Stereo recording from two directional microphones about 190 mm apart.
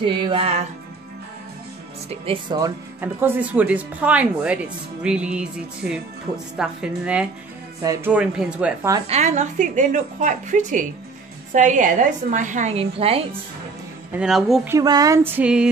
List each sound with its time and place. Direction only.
0.0 s music: 25° right (ahead or behind)
2.0 s music: 30° right (ahead or behind)
3.0 s speech: 10° right (ahead or behind)
5.0 s music: 5° right (ahead or behind)
7.8 s speech: 20° right (ahead or behind)
8.1 s speech: 5° right (ahead or behind)
9.1 s a woman's voice: 35° right (ahead or behind)
14.1 s music: 5° right (ahead or behind)
14.7 s speech: 20° right (ahead or behind)